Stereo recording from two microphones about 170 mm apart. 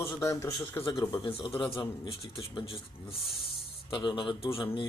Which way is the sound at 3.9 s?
25° left (ahead or behind).